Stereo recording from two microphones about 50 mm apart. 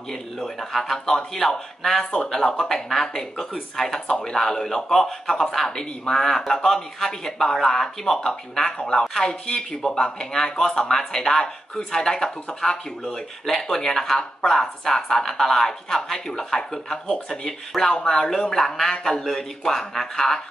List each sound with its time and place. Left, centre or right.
0.1 s speech: centre
2.0 s speech: centre